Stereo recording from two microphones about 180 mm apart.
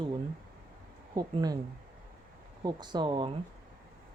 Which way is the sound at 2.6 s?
25° right (ahead or behind).